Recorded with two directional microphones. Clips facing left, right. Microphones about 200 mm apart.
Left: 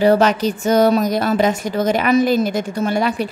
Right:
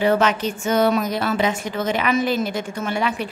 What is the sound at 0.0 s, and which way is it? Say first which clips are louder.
A woman's voice: left 5 dB; 40° left (ahead or behind).